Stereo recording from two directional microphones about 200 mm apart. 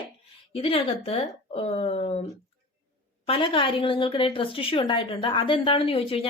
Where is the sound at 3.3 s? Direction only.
25° left (ahead or behind).